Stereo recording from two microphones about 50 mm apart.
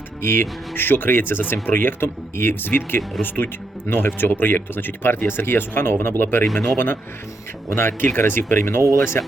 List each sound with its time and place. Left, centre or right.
0.2 s speech: left
6.4 s speech: centre
6.7 s speech: left